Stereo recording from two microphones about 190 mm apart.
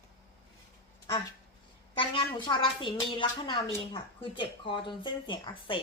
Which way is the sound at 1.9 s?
25° left (ahead or behind).